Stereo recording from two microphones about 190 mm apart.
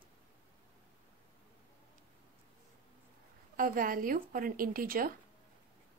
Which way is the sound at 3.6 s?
45° right (ahead or behind).